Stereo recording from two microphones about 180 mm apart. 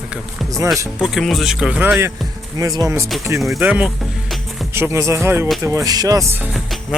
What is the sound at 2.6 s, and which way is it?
Speech, 20° right (ahead or behind).